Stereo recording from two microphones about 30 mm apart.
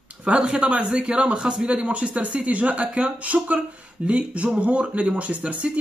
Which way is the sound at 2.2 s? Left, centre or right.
Right.